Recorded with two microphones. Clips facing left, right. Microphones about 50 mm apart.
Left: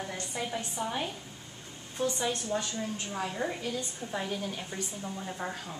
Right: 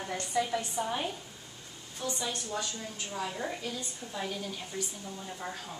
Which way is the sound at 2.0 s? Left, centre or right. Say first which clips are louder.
Left 5 dB; left.